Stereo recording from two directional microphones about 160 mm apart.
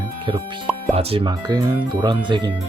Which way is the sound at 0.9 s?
35° right (ahead or behind).